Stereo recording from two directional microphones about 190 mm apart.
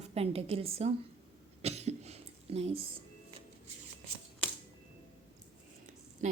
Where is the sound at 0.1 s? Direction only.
30° right (ahead or behind).